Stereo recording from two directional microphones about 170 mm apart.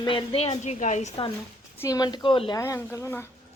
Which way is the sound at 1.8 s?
20° left (ahead or behind).